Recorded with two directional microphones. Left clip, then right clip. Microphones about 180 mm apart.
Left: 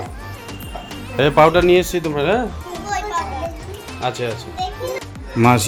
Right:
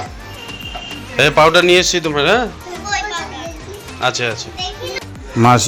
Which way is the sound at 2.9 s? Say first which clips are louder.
Right 4 dB; 30° left (ahead or behind).